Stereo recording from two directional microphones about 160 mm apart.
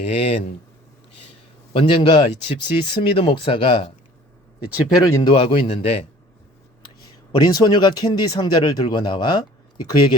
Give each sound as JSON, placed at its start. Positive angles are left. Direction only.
{"t": 0.0, "sound": "speech", "side_deg": 40}
{"t": 1.7, "sound": "speech", "side_deg": 35}
{"t": 4.9, "sound": "speech", "side_deg": 25}
{"t": 5.3, "sound": "speech", "side_deg": 35}
{"t": 7.4, "sound": "speech", "side_deg": 25}